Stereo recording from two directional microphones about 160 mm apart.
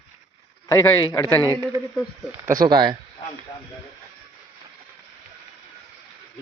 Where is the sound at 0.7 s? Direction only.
20° left (ahead or behind).